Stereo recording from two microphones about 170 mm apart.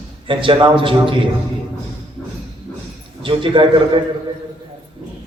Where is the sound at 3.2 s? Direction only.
30° right (ahead or behind).